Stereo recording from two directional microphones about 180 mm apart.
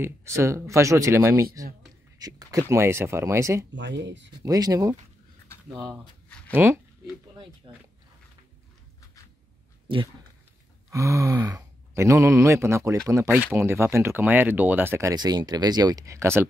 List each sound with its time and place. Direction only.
0.0 s speech: 15° right (ahead or behind)
3.7 s speech: 80° right
4.4 s speech: 20° right (ahead or behind)
6.2 s a sound: 5° left (ahead or behind)
6.5 s speech: 15° right (ahead or behind)
7.7 s speech: 25° right (ahead or behind)
9.9 s speech: 30° right (ahead or behind)
10.9 s speech: 15° right (ahead or behind)